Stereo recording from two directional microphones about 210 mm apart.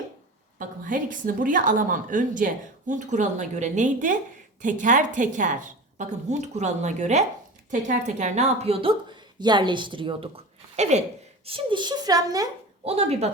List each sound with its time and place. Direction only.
0.6 s a woman's voice: 40° right (ahead or behind); by 12.5 s 15° right (ahead or behind)
12.8 s a child's voice: 30° right (ahead or behind)